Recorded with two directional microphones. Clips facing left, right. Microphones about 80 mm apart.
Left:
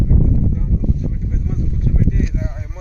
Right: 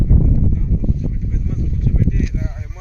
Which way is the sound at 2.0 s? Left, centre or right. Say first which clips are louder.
Left 1 dB; left.